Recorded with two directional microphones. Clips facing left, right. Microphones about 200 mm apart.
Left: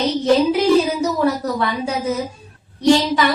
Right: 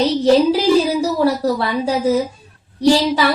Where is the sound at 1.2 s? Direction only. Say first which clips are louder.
Right 3 dB; 30° right (ahead or behind).